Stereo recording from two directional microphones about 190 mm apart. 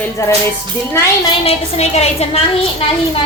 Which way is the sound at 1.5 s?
35° left (ahead or behind).